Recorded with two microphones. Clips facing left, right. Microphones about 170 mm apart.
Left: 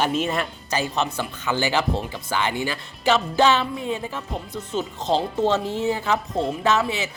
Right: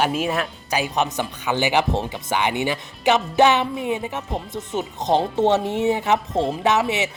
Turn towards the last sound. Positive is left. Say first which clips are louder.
# right 2 dB
turn(degrees=-20)  # may be behind; listen again after turning